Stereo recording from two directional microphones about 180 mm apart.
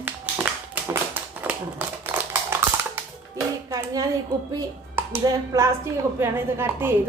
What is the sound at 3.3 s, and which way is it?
A child's voice, 20° right (ahead or behind).